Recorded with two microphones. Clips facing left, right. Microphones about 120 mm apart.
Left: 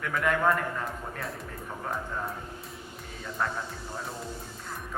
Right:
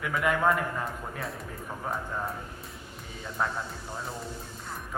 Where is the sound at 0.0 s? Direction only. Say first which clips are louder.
Even; 5° right (ahead or behind).